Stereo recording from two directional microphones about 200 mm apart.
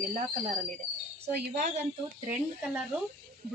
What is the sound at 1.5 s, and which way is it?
Speech, 35° right (ahead or behind).